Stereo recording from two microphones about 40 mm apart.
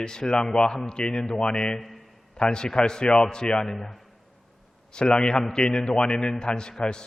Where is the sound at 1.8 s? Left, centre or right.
Centre.